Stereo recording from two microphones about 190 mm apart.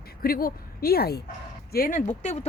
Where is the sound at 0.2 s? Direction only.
50° left (ahead or behind).